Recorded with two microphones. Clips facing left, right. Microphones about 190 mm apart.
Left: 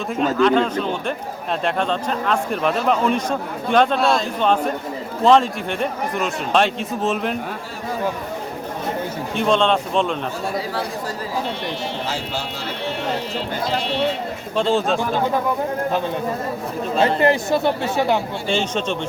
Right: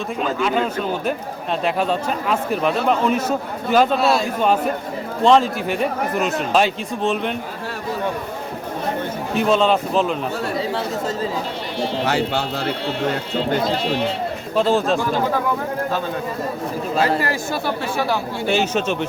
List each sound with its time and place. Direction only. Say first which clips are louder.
0.2 s a man's voice: left 5 dB; 5° right (ahead or behind)
9.3 s speech: right 1 dB; 5° right (ahead or behind)
12.0 s speech: right 6 dB; 65° right (ahead or behind)
14.5 s speech: right 1 dB; 5° right (ahead or behind)
17.2 s speech: left 6 dB; 25° left (ahead or behind)
18.5 s a man's voice: right 2 dB; 5° right (ahead or behind)